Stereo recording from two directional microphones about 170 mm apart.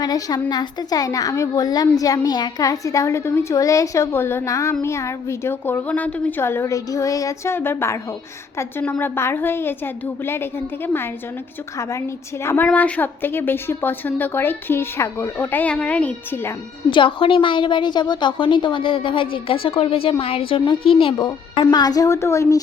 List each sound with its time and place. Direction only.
0.0 s a woman's voice: 20° left (ahead or behind)
16.9 s a woman's voice: 30° left (ahead or behind)